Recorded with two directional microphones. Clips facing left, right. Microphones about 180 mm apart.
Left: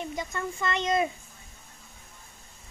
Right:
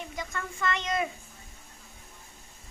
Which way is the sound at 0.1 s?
25° left (ahead or behind).